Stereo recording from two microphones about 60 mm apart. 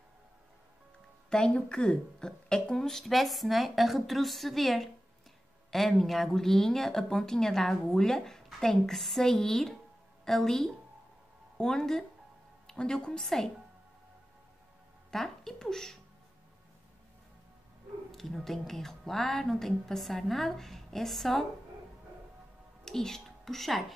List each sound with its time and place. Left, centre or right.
1.3 s a woman's voice: centre
15.0 s speech: centre
18.1 s speech: centre
22.8 s speech: centre